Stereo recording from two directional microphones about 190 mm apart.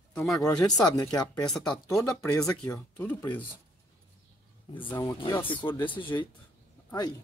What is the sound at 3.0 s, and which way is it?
Speech, 10° left (ahead or behind).